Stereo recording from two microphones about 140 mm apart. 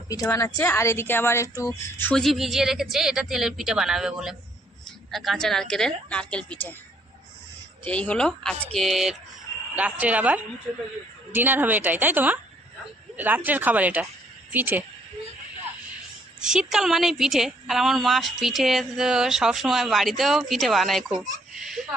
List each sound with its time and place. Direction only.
0.3 s a woman's voice: 20° left (ahead or behind)
2.1 s a woman's voice: centre (ahead or behind)
7.9 s a woman's voice: 10° left (ahead or behind); by 14.8 s 15° right (ahead or behind)
16.4 s a woman's voice: 5° right (ahead or behind)